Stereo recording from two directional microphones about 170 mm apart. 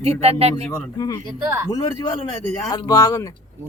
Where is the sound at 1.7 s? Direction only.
20° left (ahead or behind).